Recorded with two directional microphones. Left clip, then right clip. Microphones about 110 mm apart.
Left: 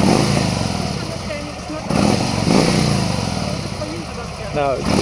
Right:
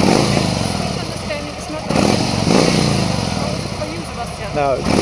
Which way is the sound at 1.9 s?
20° right (ahead or behind).